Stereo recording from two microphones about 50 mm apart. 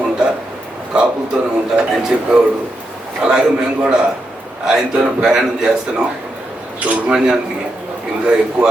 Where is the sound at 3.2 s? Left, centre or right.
Centre.